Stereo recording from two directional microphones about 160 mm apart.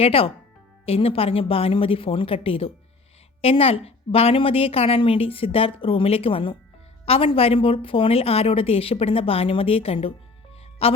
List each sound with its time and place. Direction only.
0.0 s a woman's voice: 35° left (ahead or behind)